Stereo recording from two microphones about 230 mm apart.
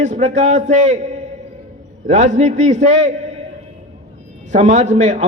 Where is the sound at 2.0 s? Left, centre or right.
Right.